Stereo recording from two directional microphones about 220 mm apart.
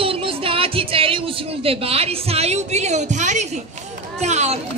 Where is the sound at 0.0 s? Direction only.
25° right (ahead or behind).